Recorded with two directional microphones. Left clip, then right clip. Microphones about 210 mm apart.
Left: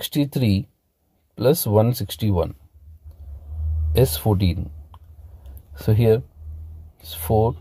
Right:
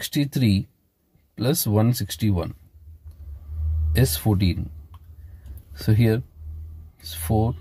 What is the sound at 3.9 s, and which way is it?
Speech, 20° left (ahead or behind).